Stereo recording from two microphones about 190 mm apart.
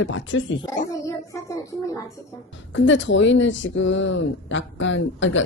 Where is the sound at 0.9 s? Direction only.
15° left (ahead or behind).